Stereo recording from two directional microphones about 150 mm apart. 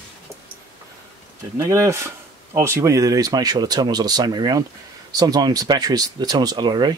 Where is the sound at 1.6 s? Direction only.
15° right (ahead or behind).